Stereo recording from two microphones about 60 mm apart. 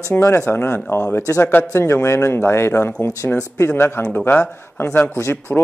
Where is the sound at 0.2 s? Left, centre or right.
Left.